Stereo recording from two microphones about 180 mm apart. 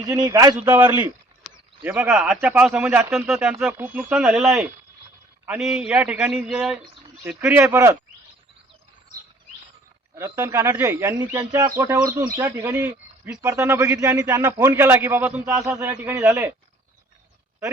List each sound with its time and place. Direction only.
0.0 s a man's voice: 20° right (ahead or behind)
10.2 s speech: 15° right (ahead or behind)